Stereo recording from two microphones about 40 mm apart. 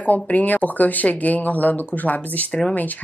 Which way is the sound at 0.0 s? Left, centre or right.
Left.